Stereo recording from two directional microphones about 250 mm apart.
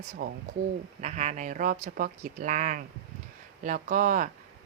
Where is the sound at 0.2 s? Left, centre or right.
Right.